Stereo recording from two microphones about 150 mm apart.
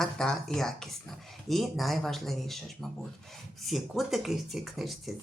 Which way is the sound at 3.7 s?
Centre (ahead or behind).